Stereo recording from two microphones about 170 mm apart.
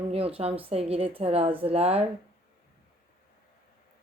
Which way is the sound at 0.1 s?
35° right (ahead or behind).